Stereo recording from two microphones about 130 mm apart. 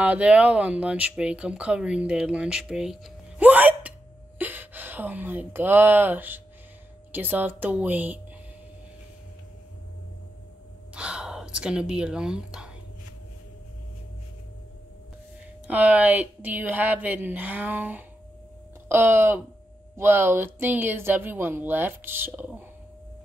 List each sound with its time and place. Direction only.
0.0 s speech: 10° right (ahead or behind)
11.0 s a sound: 5° right (ahead or behind)
15.6 s speech: 10° right (ahead or behind)